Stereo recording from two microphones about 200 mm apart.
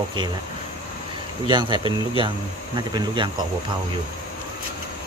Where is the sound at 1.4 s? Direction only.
25° right (ahead or behind).